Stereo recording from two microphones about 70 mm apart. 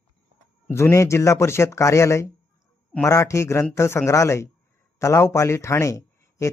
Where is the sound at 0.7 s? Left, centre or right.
Left.